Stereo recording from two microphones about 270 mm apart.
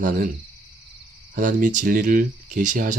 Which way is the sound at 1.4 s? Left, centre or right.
Right.